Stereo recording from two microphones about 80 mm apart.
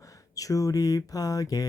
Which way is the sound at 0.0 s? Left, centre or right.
Left.